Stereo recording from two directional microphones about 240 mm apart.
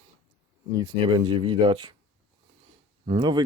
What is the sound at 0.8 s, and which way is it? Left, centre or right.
Speech, centre.